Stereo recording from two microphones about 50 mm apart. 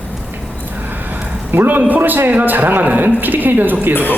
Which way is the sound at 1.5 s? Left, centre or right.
Right.